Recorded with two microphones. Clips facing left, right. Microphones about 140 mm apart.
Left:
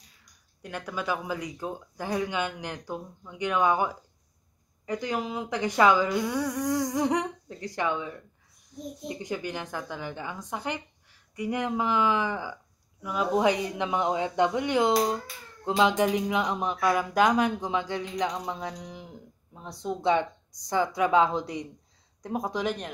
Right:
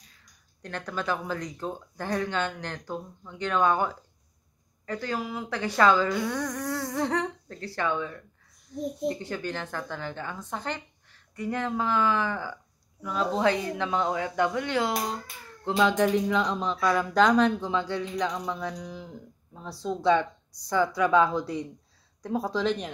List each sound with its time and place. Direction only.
0.6 s a woman's voice: 10° left (ahead or behind)